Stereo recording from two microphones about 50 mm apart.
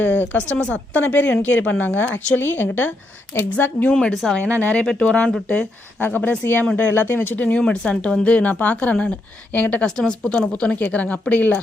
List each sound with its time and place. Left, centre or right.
0.0 s a woman's voice: left
4.1 s speech: centre
4.4 s speech: left
6.1 s speech: left
7.6 s speech: centre; by 9.8 s left
10.1 s a woman's voice: centre
10.8 s speech: left